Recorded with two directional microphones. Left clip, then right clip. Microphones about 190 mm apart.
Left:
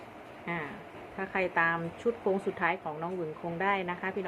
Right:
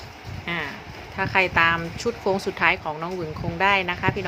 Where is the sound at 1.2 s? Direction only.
25° right (ahead or behind).